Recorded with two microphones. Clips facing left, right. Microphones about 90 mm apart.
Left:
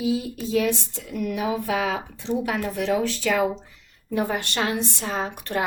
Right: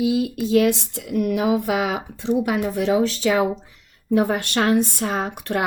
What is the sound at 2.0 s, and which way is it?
Speech, 15° right (ahead or behind).